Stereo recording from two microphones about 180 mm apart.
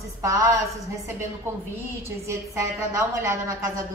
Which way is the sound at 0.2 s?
15° right (ahead or behind).